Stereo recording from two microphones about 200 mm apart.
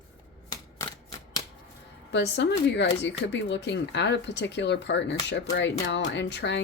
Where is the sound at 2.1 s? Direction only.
60° left (ahead or behind).